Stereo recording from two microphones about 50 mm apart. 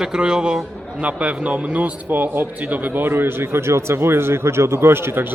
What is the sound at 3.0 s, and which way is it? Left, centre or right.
A man's voice, right.